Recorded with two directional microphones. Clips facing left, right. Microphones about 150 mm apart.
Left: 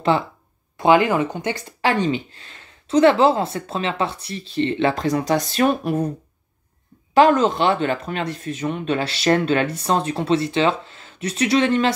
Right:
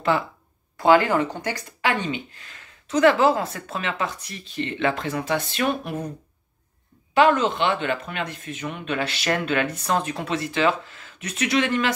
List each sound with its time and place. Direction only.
0.1 s speech: 30° left (ahead or behind)
0.7 s speech: 20° left (ahead or behind)
1.8 s speech: 35° left (ahead or behind)
7.2 s speech: 35° left (ahead or behind)